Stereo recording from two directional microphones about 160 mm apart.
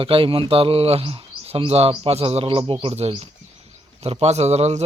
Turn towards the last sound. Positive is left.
turn(degrees=-45)  # may be behind; listen again after turning